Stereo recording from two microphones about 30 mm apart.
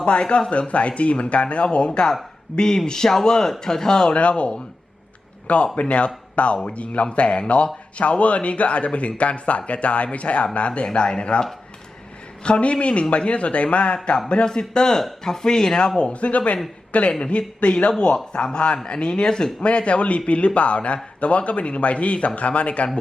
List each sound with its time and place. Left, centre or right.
0.0 s speech: left
0.7 s speech: left
2.6 s speech: left
4.1 s speech: left
5.7 s speech: left
14.4 s speech: left
16.0 s speech: left
17.1 s speech: left
19.6 s speech: left